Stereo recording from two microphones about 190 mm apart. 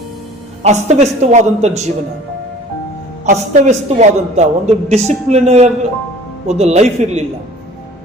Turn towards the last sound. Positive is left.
turn(degrees=-35)  # may be behind; listen again after turning